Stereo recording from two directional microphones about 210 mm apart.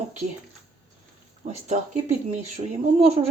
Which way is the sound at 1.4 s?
35° right (ahead or behind).